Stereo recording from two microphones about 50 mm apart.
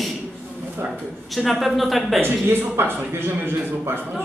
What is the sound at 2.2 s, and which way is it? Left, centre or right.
Speech, right.